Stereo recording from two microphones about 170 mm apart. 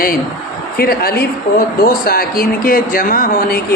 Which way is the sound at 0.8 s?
65° left (ahead or behind).